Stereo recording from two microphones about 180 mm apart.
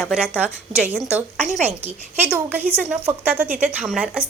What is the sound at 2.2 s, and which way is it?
A woman's voice, 10° right (ahead or behind).